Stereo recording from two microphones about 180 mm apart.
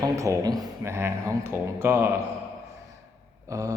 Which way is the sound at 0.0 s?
20° right (ahead or behind).